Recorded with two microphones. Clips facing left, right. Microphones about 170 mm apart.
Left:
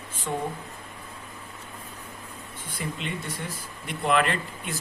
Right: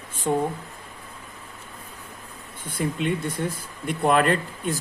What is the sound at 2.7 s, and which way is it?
Speech, 50° right (ahead or behind).